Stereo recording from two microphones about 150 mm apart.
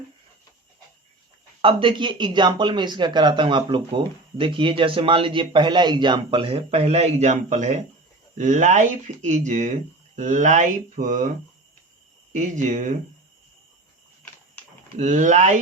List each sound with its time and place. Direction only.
1.6 s speech: 35° right (ahead or behind); by 11.3 s 55° right (ahead or behind)
12.3 s speech: 50° right (ahead or behind)
14.9 s speech: 55° right (ahead or behind)